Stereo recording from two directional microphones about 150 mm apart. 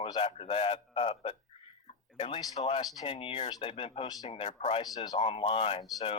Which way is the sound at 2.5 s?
40° left (ahead or behind).